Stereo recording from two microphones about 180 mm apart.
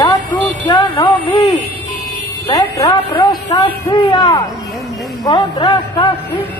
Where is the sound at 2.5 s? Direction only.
20° left (ahead or behind).